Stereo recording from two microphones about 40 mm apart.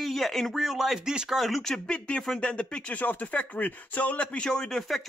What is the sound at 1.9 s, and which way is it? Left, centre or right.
Speech, left.